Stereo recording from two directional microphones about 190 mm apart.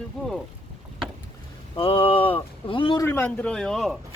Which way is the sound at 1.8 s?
30° left (ahead or behind).